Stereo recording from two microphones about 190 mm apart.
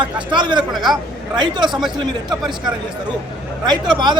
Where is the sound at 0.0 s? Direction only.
25° right (ahead or behind).